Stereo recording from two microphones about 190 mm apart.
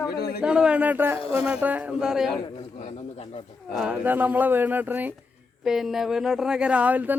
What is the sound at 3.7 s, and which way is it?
Speech, 5° right (ahead or behind).